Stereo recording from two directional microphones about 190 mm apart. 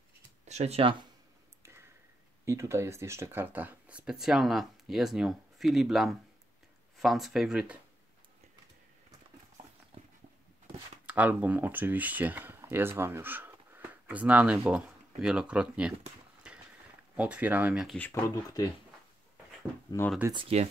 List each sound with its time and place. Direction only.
0.5 s speech: 35° right (ahead or behind)
1.6 s a sound: 15° right (ahead or behind)
2.4 s speech: 15° right (ahead or behind)
11.1 s speech: 10° right (ahead or behind)
16.5 s a sound: 5° right (ahead or behind)
17.1 s speech: 5° right (ahead or behind)
17.9 s speech: 10° left (ahead or behind)
20.0 s speech: 15° left (ahead or behind)
20.3 s speech: 30° right (ahead or behind)